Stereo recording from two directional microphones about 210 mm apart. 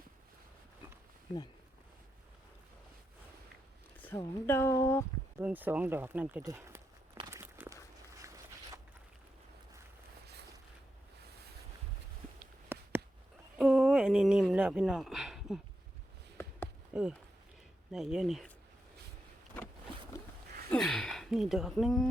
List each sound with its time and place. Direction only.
3.9 s a sound: 10° left (ahead or behind)
4.2 s speech: 10° left (ahead or behind)
5.4 s walk: 10° right (ahead or behind)
8.2 s zipper: 15° right (ahead or behind)
12.6 s a sound: 10° right (ahead or behind)
16.9 s speech: 5° right (ahead or behind)
20.7 s speech: 5° left (ahead or behind)